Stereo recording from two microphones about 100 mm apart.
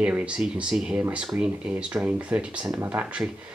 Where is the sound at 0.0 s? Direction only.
15° right (ahead or behind).